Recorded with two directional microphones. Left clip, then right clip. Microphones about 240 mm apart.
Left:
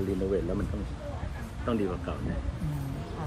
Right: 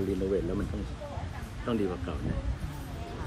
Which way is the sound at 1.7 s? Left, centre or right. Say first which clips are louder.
Left 1 dB; centre.